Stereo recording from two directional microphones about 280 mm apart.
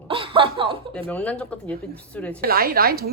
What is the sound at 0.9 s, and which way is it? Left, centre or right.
Speech, centre.